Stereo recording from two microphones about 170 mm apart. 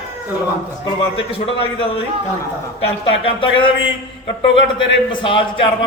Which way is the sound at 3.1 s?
30° left (ahead or behind).